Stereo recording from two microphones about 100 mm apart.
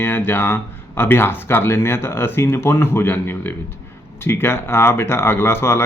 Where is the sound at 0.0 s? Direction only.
20° left (ahead or behind).